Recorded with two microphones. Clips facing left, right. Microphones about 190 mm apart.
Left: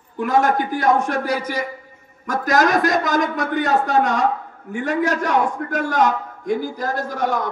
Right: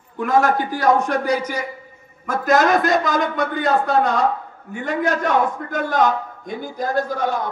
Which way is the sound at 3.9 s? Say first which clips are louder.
Even; 80° left.